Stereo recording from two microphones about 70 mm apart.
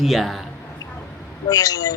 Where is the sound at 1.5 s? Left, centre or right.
Left.